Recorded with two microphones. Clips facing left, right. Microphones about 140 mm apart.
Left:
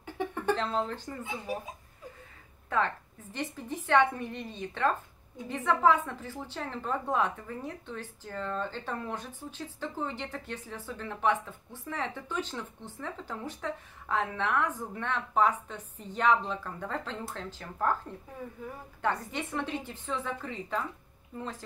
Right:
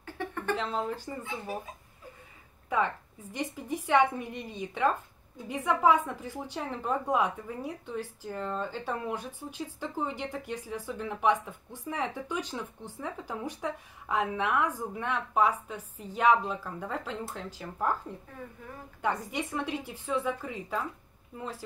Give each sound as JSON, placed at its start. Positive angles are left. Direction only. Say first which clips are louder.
{"t": 0.0, "sound": "a sound", "louder": "left 3 dB", "side_deg": 15}
{"t": 0.6, "sound": "a woman's voice", "louder": "left 1 dB", "side_deg": -10}
{"t": 3.3, "sound": "a woman's voice", "louder": "right 2 dB", "side_deg": -10}
{"t": 18.9, "sound": "a woman's voice", "louder": "right 1 dB", "side_deg": -10}